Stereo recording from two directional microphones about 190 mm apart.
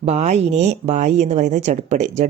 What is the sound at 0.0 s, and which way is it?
Speech, 35° right (ahead or behind).